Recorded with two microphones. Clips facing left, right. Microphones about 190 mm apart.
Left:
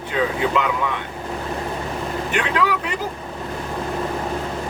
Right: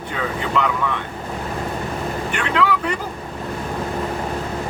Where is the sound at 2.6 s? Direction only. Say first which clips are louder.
Right 2 dB; 15° left (ahead or behind).